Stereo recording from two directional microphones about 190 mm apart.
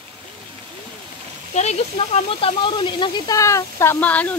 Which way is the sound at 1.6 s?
35° left (ahead or behind).